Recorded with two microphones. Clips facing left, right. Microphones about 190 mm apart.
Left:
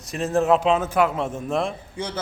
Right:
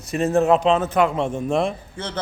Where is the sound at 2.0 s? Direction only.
15° left (ahead or behind).